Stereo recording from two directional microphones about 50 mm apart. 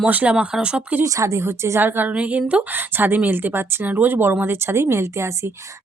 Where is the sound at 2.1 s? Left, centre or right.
Right.